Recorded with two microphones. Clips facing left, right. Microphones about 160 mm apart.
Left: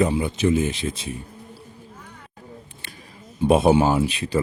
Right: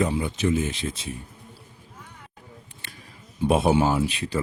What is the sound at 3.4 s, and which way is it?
Speech, 20° left (ahead or behind).